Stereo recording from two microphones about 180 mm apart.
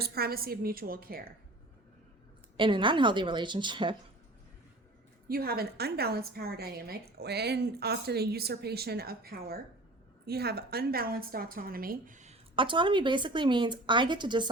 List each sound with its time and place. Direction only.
0.0 s a woman's voice: 60° right (ahead or behind)
2.6 s a woman's voice: 25° right (ahead or behind)
5.3 s a woman's voice: 55° right (ahead or behind); by 14.5 s 25° right (ahead or behind)